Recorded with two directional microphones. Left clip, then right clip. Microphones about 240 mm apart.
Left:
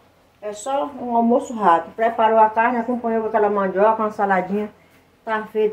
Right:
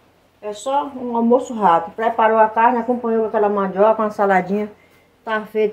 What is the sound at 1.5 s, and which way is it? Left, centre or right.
A man's voice, right.